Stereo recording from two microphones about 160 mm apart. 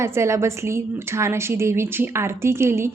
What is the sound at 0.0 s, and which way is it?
A woman's voice, 15° right (ahead or behind).